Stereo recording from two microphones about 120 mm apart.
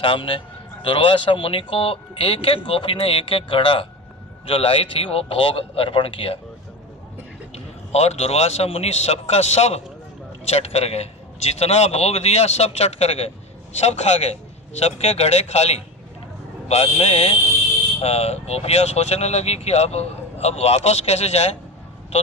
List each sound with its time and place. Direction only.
0.0 s speech: 45° left (ahead or behind)
7.5 s speech: 60° left (ahead or behind)